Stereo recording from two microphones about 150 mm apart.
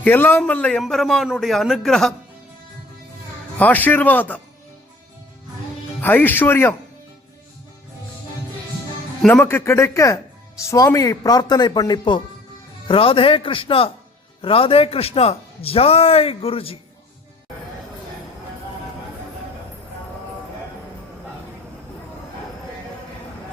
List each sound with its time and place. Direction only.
0.0 s a man's voice: 15° left (ahead or behind)
3.6 s speech: 10° left (ahead or behind)
6.0 s speech: 10° left (ahead or behind)
9.2 s a man's voice: 10° left (ahead or behind); by 16.7 s 40° left (ahead or behind)